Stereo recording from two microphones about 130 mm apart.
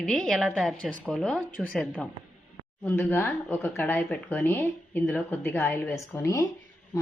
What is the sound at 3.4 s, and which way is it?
A woman's voice, 15° left (ahead or behind).